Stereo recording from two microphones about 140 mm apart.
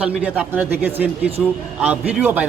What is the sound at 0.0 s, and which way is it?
A man's voice, 10° right (ahead or behind).